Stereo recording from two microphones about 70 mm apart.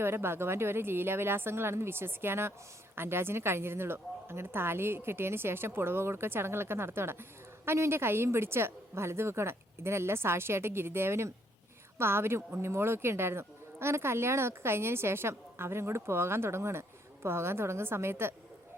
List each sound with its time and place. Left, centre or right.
0.0 s a woman's voice: right